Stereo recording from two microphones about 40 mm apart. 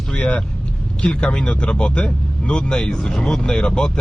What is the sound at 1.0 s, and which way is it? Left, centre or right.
A man's voice, left.